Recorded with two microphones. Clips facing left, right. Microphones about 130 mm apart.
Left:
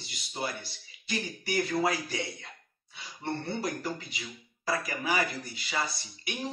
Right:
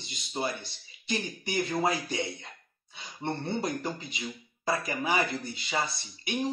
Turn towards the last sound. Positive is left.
turn(degrees=-25)  # may be behind; listen again after turning